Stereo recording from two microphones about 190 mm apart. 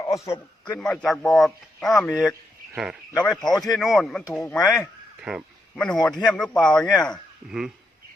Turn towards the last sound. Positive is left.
turn(degrees=-5)  # may be behind; listen again after turning